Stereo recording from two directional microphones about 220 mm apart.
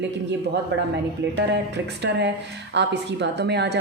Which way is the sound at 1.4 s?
50° right (ahead or behind).